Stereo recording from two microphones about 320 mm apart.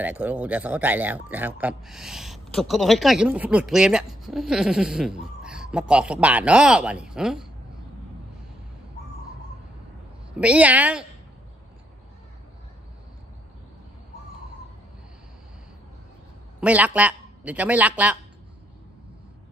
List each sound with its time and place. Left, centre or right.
0.0 s a man's voice: centre
10.4 s a man's voice: centre
16.5 s a man's voice: centre